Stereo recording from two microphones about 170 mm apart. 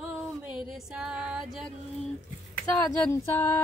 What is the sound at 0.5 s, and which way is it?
Music, 5° right (ahead or behind).